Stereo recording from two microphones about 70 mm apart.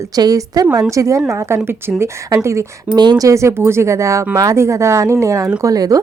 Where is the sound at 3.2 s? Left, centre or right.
Right.